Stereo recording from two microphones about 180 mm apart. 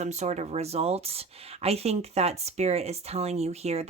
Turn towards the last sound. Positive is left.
turn(degrees=-35)  # may be behind; listen again after turning